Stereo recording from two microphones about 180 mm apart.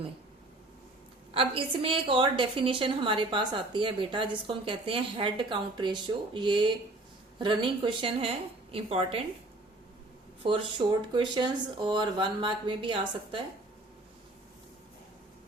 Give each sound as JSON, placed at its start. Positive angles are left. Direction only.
{"t": 1.3, "sound": "a woman's voice", "side_deg": -30}
{"t": 10.4, "sound": "a woman's voice", "side_deg": -25}